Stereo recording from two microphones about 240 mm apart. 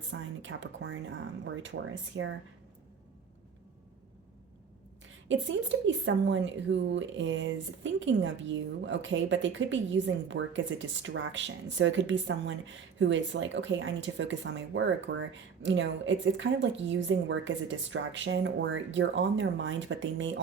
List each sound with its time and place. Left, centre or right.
0.1 s a woman's voice: right
5.3 s a woman's voice: right